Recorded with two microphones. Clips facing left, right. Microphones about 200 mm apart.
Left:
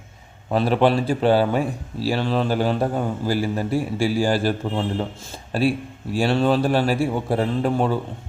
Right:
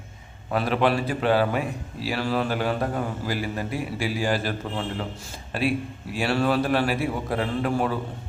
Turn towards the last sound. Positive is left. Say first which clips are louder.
# left 4 dB
turn(degrees=30)  # may be behind; listen again after turning